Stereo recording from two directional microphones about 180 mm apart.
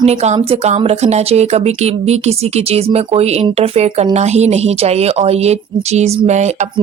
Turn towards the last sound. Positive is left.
turn(degrees=-40)  # may be behind; listen again after turning